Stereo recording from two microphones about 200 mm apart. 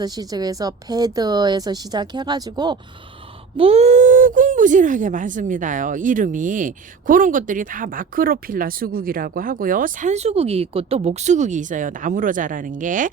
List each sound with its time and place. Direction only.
0.0 s speech: 20° right (ahead or behind)
3.6 s speech: 30° right (ahead or behind)